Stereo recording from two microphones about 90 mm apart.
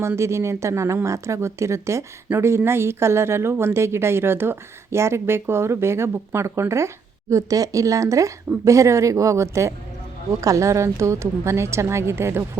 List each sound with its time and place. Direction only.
0.2 s a woman's voice: 30° right (ahead or behind)